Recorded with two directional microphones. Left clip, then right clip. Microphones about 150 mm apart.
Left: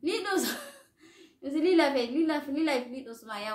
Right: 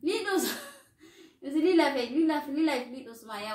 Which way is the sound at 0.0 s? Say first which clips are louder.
Right 1 dB; 10° left (ahead or behind).